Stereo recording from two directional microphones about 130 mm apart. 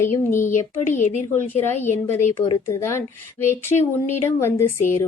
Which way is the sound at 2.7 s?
20° left (ahead or behind).